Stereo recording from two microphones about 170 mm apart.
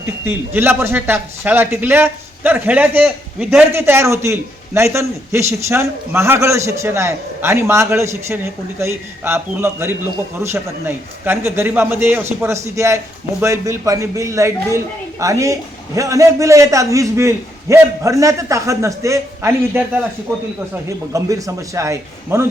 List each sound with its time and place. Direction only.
0.0 s a man's voice: 10° right (ahead or behind)
20.8 s a man's voice: 20° right (ahead or behind)